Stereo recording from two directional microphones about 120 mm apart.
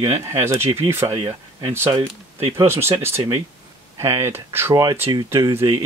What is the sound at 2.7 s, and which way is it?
Speech, 20° right (ahead or behind).